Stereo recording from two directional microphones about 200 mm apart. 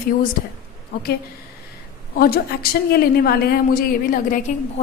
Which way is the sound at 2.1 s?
50° left (ahead or behind).